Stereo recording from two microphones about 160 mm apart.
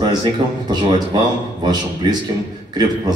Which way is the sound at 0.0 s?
30° right (ahead or behind).